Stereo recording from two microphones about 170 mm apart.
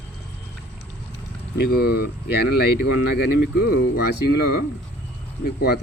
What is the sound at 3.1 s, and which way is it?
Speech, 65° left (ahead or behind).